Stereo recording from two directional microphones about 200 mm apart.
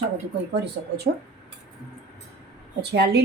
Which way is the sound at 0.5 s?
55° right (ahead or behind).